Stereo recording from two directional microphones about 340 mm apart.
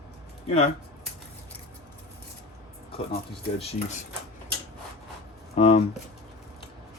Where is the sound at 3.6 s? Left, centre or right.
Centre.